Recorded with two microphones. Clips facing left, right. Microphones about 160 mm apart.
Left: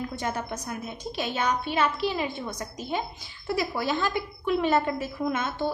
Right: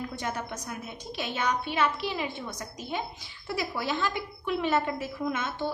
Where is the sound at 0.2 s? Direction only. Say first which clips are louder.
Left 3 dB; 35° left (ahead or behind).